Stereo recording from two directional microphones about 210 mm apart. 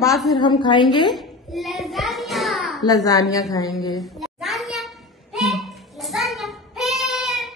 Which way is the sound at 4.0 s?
Centre (ahead or behind).